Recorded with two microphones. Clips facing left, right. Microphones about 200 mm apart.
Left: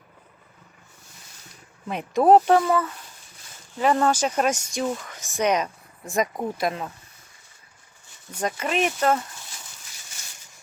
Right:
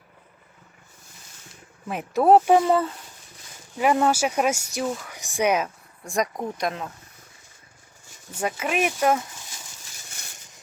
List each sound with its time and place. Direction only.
1.9 s speech: 5° right (ahead or behind)
2.5 s speech: 20° right (ahead or behind)
3.8 s speech: 10° right (ahead or behind)
8.3 s speech: 5° right (ahead or behind)